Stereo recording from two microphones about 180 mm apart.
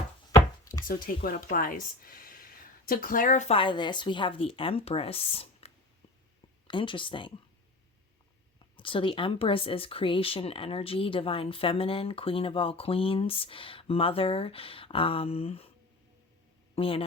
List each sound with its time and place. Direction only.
0.9 s speech: 55° left (ahead or behind); by 7.3 s 30° left (ahead or behind)
8.7 s speech: 30° left (ahead or behind)
16.7 s a man's voice: 30° left (ahead or behind)